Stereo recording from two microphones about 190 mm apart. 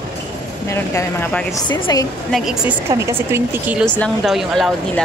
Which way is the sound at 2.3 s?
Centre (ahead or behind).